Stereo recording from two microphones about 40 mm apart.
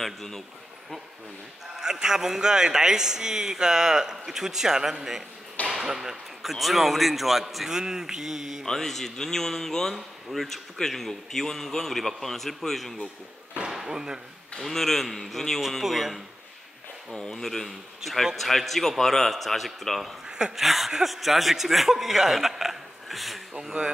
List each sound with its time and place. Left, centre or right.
0.0 s a man's voice: centre
1.8 s a man's voice: centre
7.7 s a man's voice: centre
8.6 s a man's voice: centre
13.7 s slam: centre
14.6 s a man's voice: centre
15.8 s a man's voice: centre
17.1 s speech: centre
17.4 s a man's voice: centre
20.2 s a sound: centre
20.5 s a man's voice: centre
23.6 s a man's voice: centre